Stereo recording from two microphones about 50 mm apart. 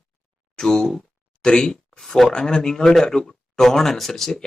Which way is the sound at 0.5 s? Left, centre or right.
Centre.